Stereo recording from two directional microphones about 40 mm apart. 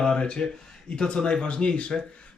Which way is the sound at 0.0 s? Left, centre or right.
Centre.